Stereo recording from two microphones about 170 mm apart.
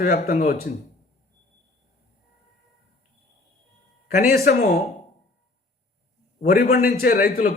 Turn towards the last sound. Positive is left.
turn(degrees=55)  # may be behind; listen again after turning